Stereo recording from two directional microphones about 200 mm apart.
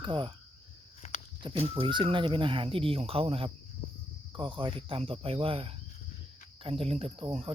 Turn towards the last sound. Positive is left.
turn(degrees=-30)  # may be behind; listen again after turning